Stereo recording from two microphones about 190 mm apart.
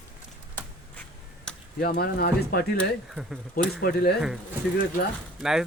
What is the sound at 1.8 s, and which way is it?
Speech, 50° left (ahead or behind).